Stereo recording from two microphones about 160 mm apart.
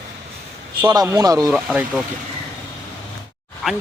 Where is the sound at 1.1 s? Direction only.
25° right (ahead or behind).